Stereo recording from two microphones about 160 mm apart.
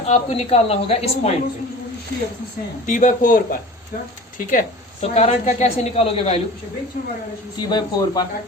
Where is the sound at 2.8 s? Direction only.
55° left (ahead or behind).